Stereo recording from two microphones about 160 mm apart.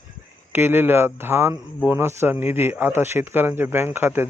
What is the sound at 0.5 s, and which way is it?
Speech, 15° right (ahead or behind).